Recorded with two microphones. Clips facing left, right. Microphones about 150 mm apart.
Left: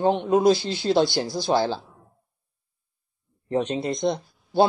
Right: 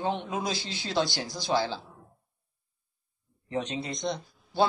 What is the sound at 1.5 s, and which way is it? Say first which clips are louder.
Speech: left 5 dB; 45° left (ahead or behind).